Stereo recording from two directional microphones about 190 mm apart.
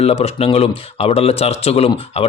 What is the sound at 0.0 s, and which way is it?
Speech, 30° left (ahead or behind).